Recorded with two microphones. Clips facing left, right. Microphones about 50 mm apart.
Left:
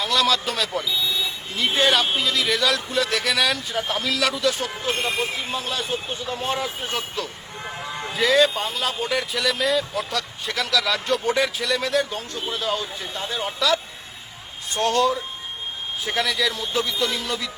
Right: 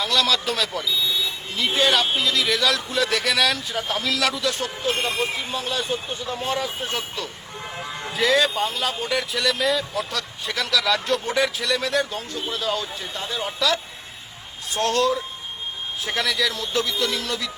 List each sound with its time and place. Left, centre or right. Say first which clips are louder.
0.0 s speech: left 1 dB; centre
6.3 s speech: even; centre
6.6 s speech: even; centre
13.1 s speech: left 1 dB; left
13.4 s speech: left 1 dB; centre